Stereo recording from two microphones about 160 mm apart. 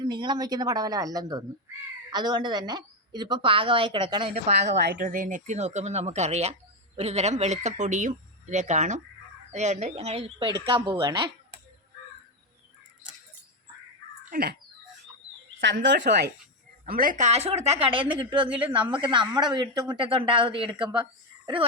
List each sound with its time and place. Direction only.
0.0 s a woman's voice: 30° right (ahead or behind)
4.4 s speech: 45° right (ahead or behind)
4.8 s speech: 90° right
5.0 s speech: 55° right (ahead or behind); by 11.3 s 30° right (ahead or behind)
14.3 s a sound: 70° right (ahead or behind)
15.6 s speech: 90° right
16.8 s a woman's voice: 65° right (ahead or behind); by 21.6 s 30° right (ahead or behind)